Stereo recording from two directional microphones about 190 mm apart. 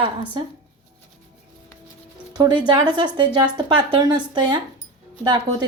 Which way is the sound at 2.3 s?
25° right (ahead or behind).